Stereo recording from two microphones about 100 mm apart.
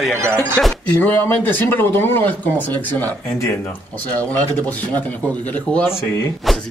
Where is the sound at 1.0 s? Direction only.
15° left (ahead or behind).